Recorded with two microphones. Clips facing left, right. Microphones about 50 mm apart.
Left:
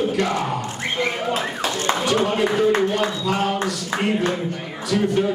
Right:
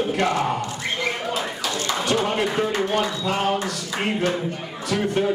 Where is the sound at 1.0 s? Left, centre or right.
Left.